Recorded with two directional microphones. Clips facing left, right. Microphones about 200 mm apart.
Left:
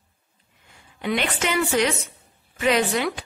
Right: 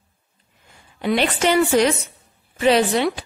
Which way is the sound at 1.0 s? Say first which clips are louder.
Right 6 dB; 35° right (ahead or behind).